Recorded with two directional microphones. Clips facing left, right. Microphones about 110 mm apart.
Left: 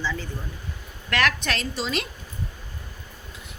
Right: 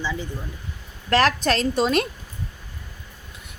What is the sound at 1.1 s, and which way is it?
Speech, 35° right (ahead or behind).